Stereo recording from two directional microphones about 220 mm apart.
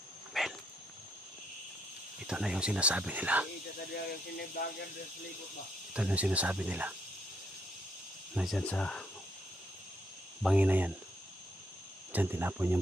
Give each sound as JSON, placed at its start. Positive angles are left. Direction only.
{"t": 0.3, "sound": "dog", "side_deg": 0}
{"t": 2.2, "sound": "speech", "side_deg": -5}
{"t": 4.6, "sound": "speech", "side_deg": 40}
{"t": 5.9, "sound": "speech", "side_deg": -5}
{"t": 8.4, "sound": "speech", "side_deg": 0}
{"t": 10.4, "sound": "speech", "side_deg": -5}
{"t": 12.1, "sound": "speech", "side_deg": -10}